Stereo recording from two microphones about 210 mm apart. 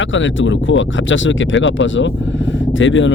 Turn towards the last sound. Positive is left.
turn(degrees=65)  # may be behind; listen again after turning